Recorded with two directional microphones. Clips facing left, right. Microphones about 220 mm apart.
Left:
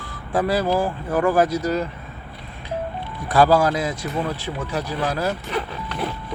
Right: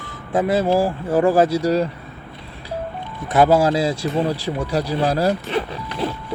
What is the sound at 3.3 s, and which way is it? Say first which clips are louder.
Speech: right 2 dB; 20° right (ahead or behind).